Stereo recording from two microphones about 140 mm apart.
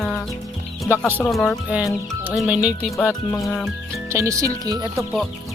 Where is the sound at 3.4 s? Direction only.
Centre (ahead or behind).